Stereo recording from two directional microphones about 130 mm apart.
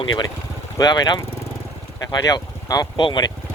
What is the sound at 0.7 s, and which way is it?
Speech, 30° left (ahead or behind).